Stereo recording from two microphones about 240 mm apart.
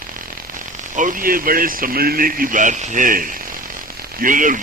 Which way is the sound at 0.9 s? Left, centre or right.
Right.